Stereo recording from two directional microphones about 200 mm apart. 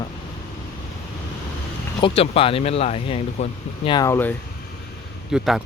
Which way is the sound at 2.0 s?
30° left (ahead or behind).